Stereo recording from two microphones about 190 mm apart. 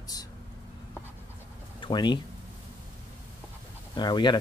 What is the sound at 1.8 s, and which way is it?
Speech, 25° left (ahead or behind).